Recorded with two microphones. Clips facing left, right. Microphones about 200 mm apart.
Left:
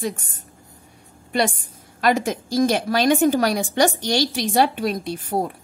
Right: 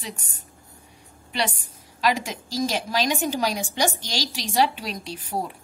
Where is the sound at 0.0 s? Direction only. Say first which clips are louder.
Left 10 dB; 50° left (ahead or behind).